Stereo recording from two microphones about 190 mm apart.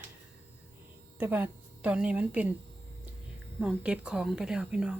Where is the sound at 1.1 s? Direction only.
10° right (ahead or behind).